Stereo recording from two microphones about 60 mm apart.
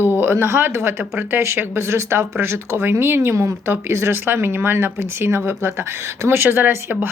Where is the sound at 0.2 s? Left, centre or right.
Right.